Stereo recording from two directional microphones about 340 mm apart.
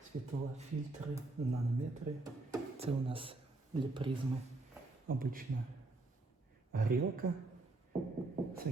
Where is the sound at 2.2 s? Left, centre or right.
Centre.